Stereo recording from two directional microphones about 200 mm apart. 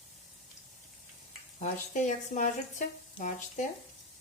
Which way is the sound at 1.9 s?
40° left (ahead or behind).